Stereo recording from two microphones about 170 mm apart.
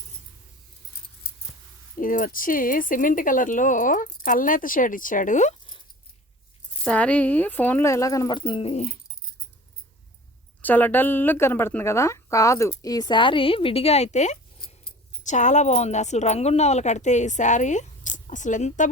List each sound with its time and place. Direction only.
2.0 s speech: 55° left (ahead or behind)
6.8 s a woman's voice: 5° left (ahead or behind); by 8.9 s 40° left (ahead or behind)
10.6 s a woman's voice: 10° left (ahead or behind); by 18.9 s 45° left (ahead or behind)